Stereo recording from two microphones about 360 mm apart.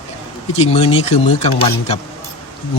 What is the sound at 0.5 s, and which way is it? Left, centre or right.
Speech, centre.